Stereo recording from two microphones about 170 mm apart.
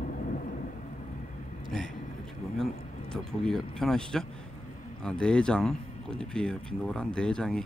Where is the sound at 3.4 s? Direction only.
5° left (ahead or behind).